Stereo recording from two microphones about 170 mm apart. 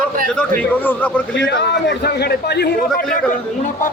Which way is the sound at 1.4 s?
90° left.